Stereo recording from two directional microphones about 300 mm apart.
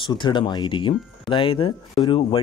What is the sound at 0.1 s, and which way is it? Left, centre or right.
Speech, centre.